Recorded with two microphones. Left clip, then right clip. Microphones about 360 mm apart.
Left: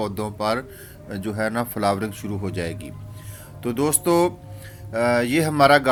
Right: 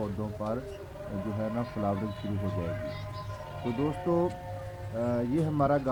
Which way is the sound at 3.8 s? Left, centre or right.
Centre.